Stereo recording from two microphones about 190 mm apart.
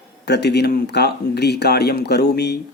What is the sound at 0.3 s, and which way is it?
Speech, 60° left (ahead or behind).